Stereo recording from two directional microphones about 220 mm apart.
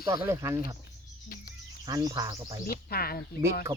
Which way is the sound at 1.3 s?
40° left (ahead or behind).